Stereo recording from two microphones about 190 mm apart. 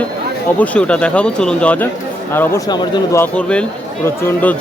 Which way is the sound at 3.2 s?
5° left (ahead or behind).